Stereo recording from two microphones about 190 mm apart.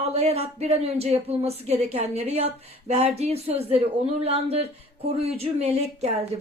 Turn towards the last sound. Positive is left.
turn(degrees=-35)  # may be behind; listen again after turning